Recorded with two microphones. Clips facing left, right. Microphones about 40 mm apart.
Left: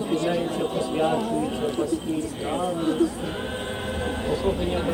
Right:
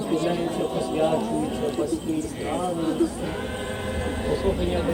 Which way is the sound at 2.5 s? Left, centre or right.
Left.